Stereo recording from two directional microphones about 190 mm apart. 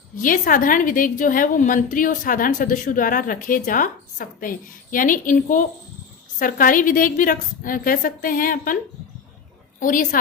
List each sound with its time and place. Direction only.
0.2 s a woman's voice: 45° left (ahead or behind)
9.8 s a woman's voice: 45° left (ahead or behind)